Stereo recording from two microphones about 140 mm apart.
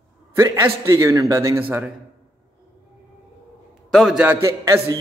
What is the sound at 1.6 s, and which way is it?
Speech, 15° right (ahead or behind).